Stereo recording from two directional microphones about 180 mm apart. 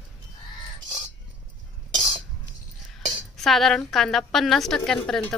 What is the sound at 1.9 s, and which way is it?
Cutlery, 25° right (ahead or behind).